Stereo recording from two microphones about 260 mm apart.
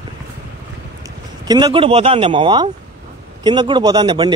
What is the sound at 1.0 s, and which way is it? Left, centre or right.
Speech, centre.